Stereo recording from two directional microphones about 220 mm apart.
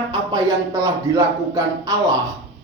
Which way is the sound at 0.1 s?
15° right (ahead or behind).